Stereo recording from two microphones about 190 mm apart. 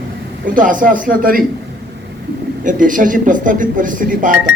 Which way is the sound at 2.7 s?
45° right (ahead or behind).